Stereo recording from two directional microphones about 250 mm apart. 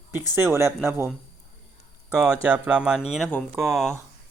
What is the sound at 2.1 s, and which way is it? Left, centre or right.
Speech, centre.